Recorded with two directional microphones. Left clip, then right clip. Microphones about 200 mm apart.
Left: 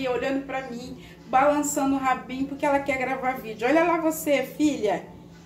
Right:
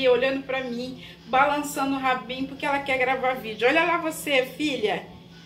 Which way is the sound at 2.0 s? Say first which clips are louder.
Even; 15° left (ahead or behind).